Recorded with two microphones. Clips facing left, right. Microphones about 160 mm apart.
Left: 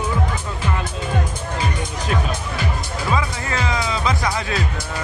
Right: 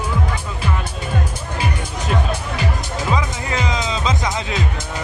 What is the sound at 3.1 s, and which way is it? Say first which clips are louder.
Music: even; 20° right (ahead or behind).